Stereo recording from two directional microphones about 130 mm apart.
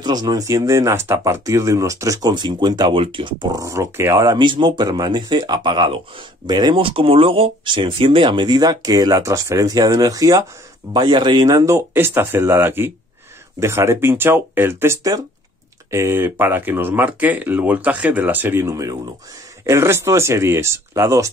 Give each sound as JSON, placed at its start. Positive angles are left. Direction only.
{"t": 0.0, "sound": "speech", "side_deg": -30}